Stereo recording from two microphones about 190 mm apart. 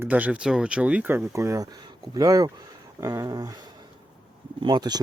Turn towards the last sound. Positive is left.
turn(degrees=-20)  # may be behind; listen again after turning